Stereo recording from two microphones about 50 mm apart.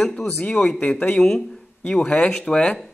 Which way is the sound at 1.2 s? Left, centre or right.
Centre.